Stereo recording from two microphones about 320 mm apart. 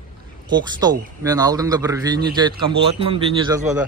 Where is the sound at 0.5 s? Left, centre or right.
Centre.